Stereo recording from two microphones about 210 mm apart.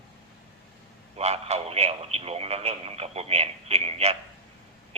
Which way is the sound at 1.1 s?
30° right (ahead or behind).